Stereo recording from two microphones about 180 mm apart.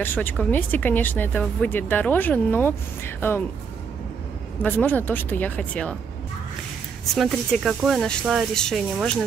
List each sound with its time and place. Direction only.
0.0 s speech: 10° left (ahead or behind)
4.6 s speech: 10° left (ahead or behind)
7.2 s speech: centre (ahead or behind)